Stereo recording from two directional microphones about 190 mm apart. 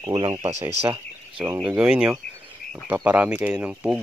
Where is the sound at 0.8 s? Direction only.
30° right (ahead or behind).